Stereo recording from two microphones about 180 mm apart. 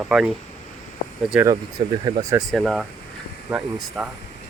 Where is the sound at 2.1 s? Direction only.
25° right (ahead or behind).